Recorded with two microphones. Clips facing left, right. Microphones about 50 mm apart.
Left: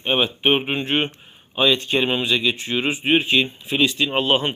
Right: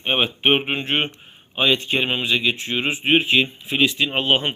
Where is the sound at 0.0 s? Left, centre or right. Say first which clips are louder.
Even; right.